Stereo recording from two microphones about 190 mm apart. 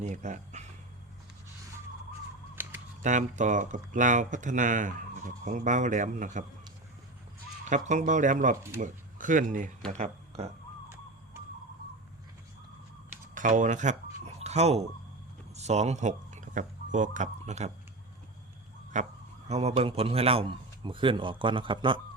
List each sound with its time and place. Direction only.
0.0 s speech: 40° right (ahead or behind)
2.6 s a sound: 10° right (ahead or behind)
3.0 s speech: 40° right (ahead or behind)
7.6 s speech: 40° right (ahead or behind)
10.0 s speech: 30° right (ahead or behind)
13.3 s speech: 40° right (ahead or behind)
14.3 s a sound: 35° right (ahead or behind)
15.5 s speech: 35° right (ahead or behind)
18.9 s a man's voice: 40° right (ahead or behind)